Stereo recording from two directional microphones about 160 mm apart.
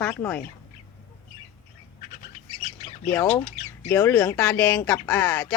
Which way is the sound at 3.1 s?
15° left (ahead or behind).